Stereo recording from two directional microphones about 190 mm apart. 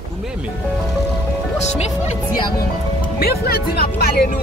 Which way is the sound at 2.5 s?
55° left (ahead or behind).